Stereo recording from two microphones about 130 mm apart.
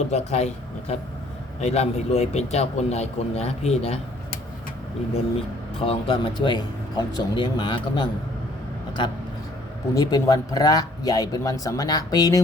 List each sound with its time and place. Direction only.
0.1 s a man's voice: 60° left (ahead or behind)
5.8 s speech: 40° left (ahead or behind)
9.9 s speech: 30° left (ahead or behind)